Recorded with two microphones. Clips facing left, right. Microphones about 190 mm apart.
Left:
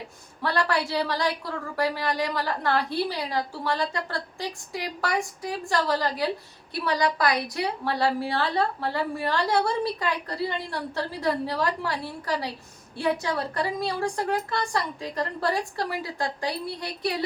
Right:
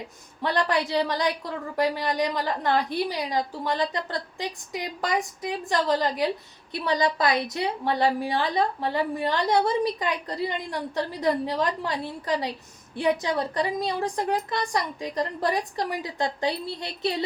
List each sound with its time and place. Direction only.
0.4 s a woman's voice: 20° right (ahead or behind)